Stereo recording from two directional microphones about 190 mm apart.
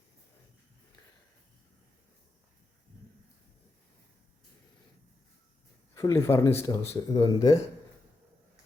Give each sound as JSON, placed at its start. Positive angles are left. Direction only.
{"t": 5.9, "sound": "speech", "side_deg": 15}